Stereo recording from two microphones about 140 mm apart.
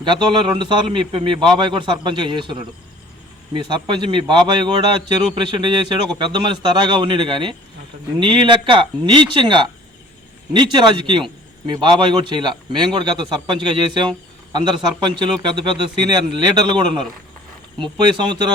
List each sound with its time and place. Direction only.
0.0 s a man's voice: 35° right (ahead or behind)